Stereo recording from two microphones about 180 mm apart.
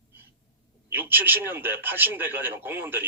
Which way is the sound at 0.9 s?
10° right (ahead or behind).